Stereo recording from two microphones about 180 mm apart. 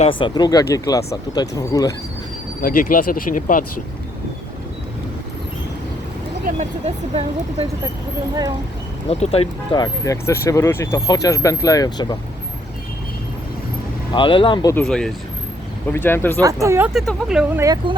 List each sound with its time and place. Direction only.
0.0 s speech: 30° left (ahead or behind)
2.6 s speech: 50° left (ahead or behind)
6.4 s speech: 35° right (ahead or behind)
9.0 s speech: 35° left (ahead or behind)
9.8 s speech: 20° left (ahead or behind)
14.1 s speech: 25° left (ahead or behind)
14.8 s speech: 5° left (ahead or behind)
16.4 s speech: 20° right (ahead or behind)
16.9 s speech: centre (ahead or behind)
17.6 s speech: 20° right (ahead or behind)